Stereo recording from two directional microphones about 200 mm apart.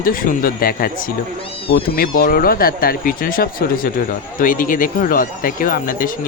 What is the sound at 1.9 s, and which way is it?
Speech, 45° left (ahead or behind).